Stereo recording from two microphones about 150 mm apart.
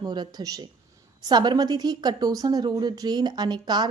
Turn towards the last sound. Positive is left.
turn(degrees=-30)  # may be behind; listen again after turning